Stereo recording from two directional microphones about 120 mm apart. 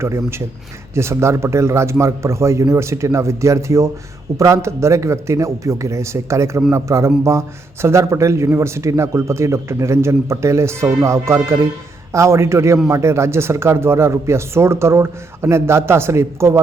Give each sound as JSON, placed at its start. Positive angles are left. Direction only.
{"t": 0.0, "sound": "speech", "side_deg": -20}